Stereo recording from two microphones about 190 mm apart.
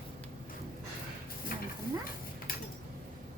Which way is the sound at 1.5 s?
50° left (ahead or behind).